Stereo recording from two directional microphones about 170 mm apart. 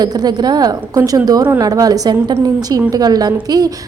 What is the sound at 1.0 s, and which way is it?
A woman's voice, 10° right (ahead or behind).